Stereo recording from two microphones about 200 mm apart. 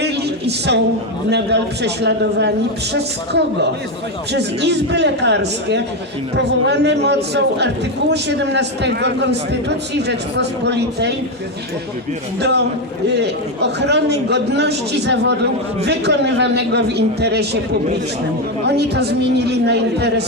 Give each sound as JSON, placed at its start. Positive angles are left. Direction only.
{"t": 0.0, "sound": "a sound", "side_deg": -55}
{"t": 1.3, "sound": "a man's voice", "side_deg": -55}
{"t": 12.4, "sound": "a man's voice", "side_deg": -55}
{"t": 18.6, "sound": "a man's voice", "side_deg": -55}